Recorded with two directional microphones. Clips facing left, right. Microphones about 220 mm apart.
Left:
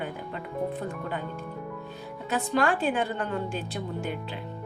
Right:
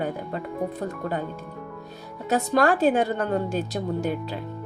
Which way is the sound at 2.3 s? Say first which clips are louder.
Right 5 dB; 40° right (ahead or behind).